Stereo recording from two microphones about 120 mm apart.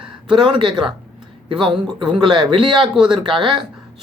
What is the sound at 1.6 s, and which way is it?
Speech, 5° right (ahead or behind).